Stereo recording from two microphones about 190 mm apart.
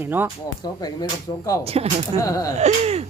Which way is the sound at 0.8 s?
20° left (ahead or behind).